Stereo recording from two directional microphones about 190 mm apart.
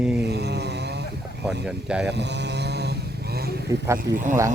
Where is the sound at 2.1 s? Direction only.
65° right (ahead or behind).